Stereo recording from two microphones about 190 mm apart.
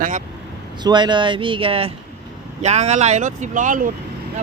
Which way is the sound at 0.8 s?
25° right (ahead or behind).